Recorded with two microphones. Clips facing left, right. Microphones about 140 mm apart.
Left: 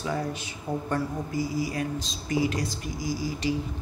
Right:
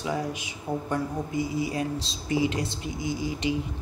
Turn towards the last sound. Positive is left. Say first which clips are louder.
# even
turn(degrees=-20)  # may be behind; listen again after turning